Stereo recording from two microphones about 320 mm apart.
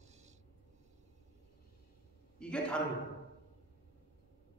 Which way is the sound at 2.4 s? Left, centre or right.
Centre.